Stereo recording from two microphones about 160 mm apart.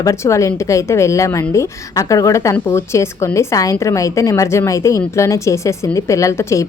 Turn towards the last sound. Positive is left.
turn(degrees=15)  # may be behind; listen again after turning